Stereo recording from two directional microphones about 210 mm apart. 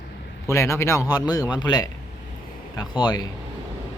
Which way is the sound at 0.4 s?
15° left (ahead or behind).